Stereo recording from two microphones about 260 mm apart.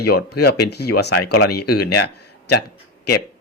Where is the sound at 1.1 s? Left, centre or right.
Left.